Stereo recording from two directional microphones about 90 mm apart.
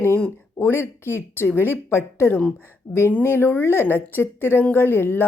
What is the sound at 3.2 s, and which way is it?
A woman's voice, 25° left (ahead or behind).